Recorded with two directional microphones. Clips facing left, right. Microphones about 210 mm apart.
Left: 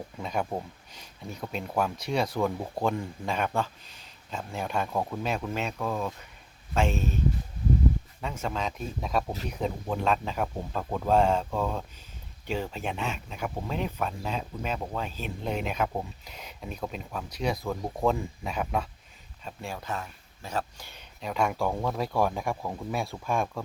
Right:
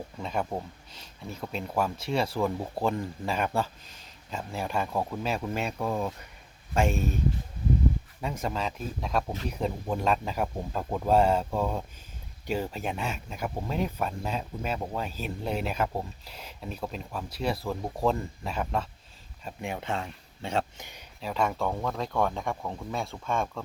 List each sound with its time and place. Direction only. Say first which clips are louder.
0.2 s speech: even; 5° left (ahead or behind)
8.2 s speech: right 1 dB; 10° right (ahead or behind)
19.6 s speech: right 3 dB; 25° right (ahead or behind)
21.2 s speech: left 1 dB; centre (ahead or behind)